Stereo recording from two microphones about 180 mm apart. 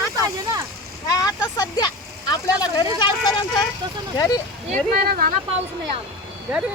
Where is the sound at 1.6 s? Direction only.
20° left (ahead or behind).